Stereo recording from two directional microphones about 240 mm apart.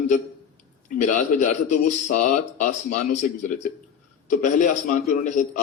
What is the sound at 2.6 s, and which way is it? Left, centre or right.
Speech, left.